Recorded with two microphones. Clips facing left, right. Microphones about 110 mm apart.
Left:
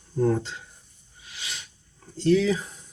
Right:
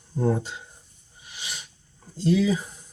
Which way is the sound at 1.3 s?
15° right (ahead or behind).